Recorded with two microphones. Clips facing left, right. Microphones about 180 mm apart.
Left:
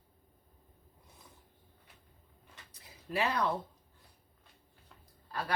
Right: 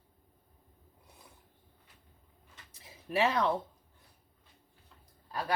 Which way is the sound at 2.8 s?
25° right (ahead or behind).